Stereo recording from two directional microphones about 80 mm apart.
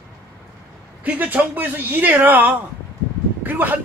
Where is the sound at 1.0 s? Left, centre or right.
Right.